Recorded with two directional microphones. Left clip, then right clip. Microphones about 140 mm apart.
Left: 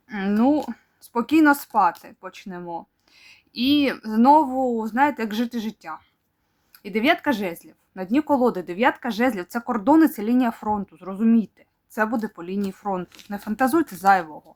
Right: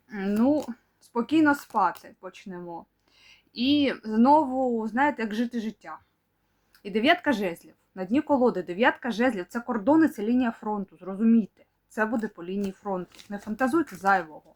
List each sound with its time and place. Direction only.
0.1 s speech: 40° left (ahead or behind)